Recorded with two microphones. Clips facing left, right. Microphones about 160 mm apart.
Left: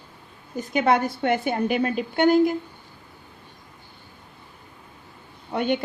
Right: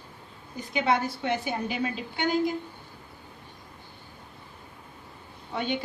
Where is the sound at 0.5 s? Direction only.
50° left (ahead or behind).